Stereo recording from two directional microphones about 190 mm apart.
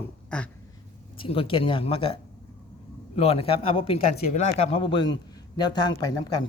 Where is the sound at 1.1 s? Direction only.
30° left (ahead or behind).